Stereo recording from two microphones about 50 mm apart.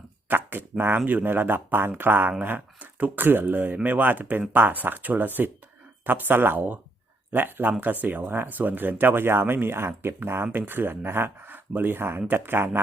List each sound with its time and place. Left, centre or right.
0.3 s a sound: right
0.9 s speech: right
2.4 s speech: right